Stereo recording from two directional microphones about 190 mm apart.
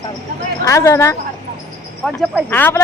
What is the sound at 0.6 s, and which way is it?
Speech, 15° left (ahead or behind).